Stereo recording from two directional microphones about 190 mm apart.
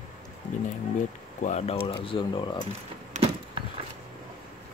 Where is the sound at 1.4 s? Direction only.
35° left (ahead or behind).